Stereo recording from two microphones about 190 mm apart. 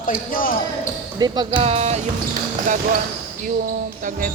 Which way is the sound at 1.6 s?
35° right (ahead or behind).